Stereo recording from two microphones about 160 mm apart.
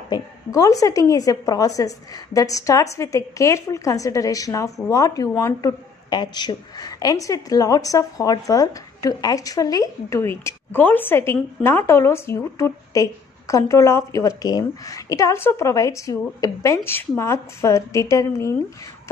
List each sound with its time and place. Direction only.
0.1 s a woman's voice: 20° left (ahead or behind)